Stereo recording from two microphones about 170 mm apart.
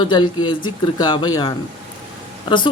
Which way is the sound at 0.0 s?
25° left (ahead or behind).